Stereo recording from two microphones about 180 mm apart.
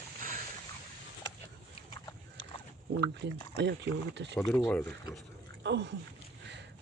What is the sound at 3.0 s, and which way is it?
Speech, 70° right (ahead or behind).